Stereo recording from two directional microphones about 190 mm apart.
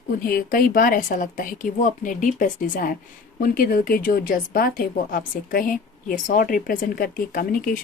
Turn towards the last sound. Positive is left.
turn(degrees=50)  # may be behind; listen again after turning